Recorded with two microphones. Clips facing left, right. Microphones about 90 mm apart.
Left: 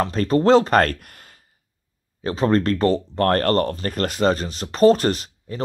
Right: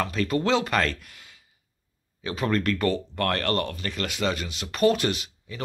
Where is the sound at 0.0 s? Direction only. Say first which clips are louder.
Left 7 dB; 35° left (ahead or behind).